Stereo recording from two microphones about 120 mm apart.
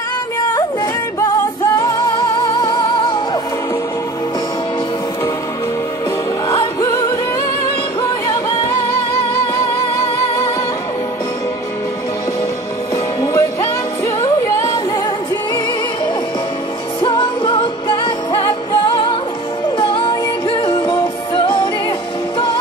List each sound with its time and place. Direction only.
1.8 s music: 35° left (ahead or behind)
12.9 s music: 30° left (ahead or behind)
17.0 s music: 45° left (ahead or behind)
19.8 s music: 45° left (ahead or behind)